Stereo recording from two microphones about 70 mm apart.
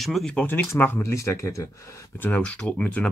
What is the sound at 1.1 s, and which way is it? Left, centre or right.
Speech, left.